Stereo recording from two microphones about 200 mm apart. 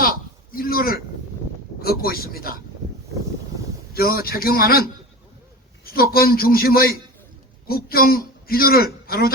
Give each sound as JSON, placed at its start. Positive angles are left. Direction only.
{"t": 0.5, "sound": "a man's voice", "side_deg": 45}
{"t": 3.9, "sound": "a man's voice", "side_deg": 50}